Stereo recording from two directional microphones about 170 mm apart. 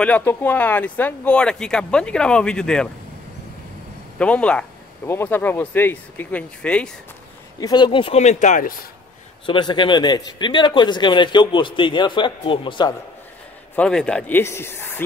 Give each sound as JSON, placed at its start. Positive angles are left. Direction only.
{"t": 0.0, "sound": "speech", "side_deg": 10}
{"t": 4.2, "sound": "speech", "side_deg": 5}
{"t": 7.6, "sound": "speech", "side_deg": 25}
{"t": 9.5, "sound": "a man's voice", "side_deg": 30}
{"t": 13.7, "sound": "speech", "side_deg": 5}